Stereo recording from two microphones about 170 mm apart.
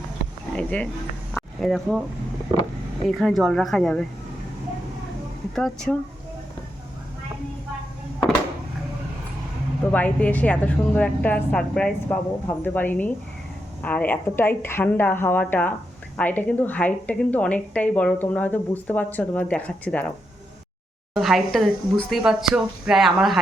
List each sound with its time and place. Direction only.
0.5 s a woman's voice: 10° left (ahead or behind)
3.1 s speech: centre (ahead or behind)
5.5 s speech: 5° left (ahead or behind)
9.9 s a woman's voice: 10° left (ahead or behind)
21.1 s speech: centre (ahead or behind)